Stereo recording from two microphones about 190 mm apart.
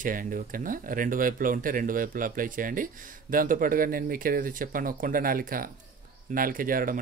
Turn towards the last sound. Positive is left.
turn(degrees=-45)  # may be behind; listen again after turning